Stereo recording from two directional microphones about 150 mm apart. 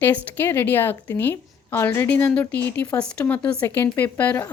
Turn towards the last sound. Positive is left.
turn(degrees=10)  # may be behind; listen again after turning